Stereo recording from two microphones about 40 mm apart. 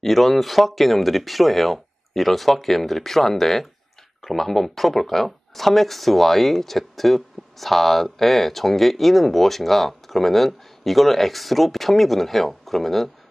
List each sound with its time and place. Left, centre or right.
0.0 s speech: centre